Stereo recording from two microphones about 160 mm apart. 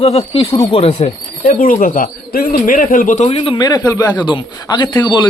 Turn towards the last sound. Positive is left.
turn(degrees=25)  # may be behind; listen again after turning